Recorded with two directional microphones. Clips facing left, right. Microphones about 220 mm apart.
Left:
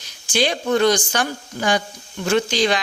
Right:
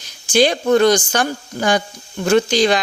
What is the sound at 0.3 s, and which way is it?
A woman's voice, 45° right (ahead or behind).